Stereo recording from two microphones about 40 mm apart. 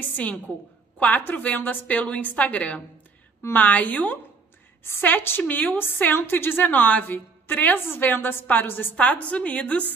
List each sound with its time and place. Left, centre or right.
0.9 s a woman's voice: left
1.9 s a woman's voice: left
5.0 s a woman's voice: left
5.4 s a woman's voice: left
6.1 s a woman's voice: left
6.6 s a woman's voice: left
8.9 s a woman's voice: left